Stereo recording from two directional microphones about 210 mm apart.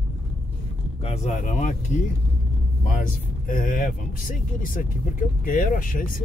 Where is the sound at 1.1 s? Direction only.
35° left (ahead or behind).